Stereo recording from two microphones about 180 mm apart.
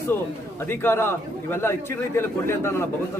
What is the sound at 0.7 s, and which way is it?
A man's voice, 15° left (ahead or behind).